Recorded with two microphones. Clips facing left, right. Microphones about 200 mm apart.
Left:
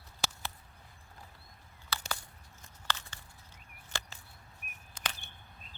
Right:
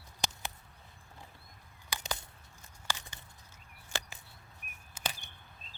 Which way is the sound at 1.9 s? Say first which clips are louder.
Even; 15° right (ahead or behind).